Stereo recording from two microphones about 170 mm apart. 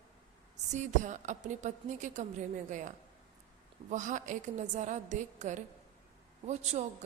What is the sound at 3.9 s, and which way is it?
A woman's voice, 45° right (ahead or behind).